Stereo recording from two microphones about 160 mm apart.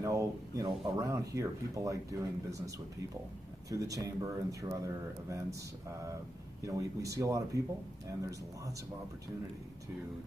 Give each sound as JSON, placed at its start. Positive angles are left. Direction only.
{"t": 0.0, "sound": "speech", "side_deg": -20}
{"t": 3.7, "sound": "speech", "side_deg": -20}
{"t": 6.6, "sound": "speech", "side_deg": -20}